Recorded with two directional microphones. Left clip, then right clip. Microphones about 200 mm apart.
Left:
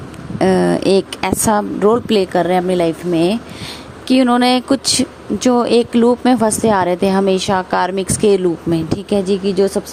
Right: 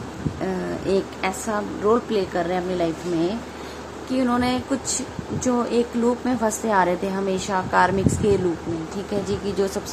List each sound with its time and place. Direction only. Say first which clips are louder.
0.3 s a woman's voice: left 15 dB; 50° left (ahead or behind); by 9.8 s 35° left (ahead or behind)